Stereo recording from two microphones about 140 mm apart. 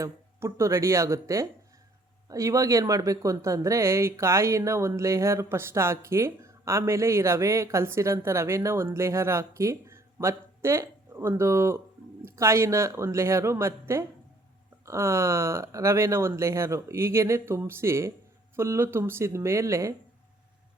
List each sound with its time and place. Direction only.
0.0 s speech: 20° right (ahead or behind)